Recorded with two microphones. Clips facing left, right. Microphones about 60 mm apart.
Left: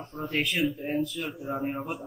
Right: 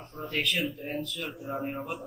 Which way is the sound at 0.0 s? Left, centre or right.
Centre.